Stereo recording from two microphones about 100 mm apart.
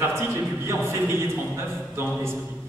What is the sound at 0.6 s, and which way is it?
Speech, 25° right (ahead or behind).